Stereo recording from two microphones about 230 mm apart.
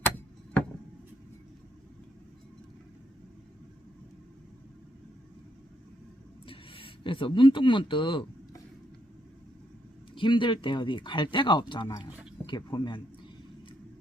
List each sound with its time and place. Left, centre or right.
6.5 s speech: left
10.2 s speech: left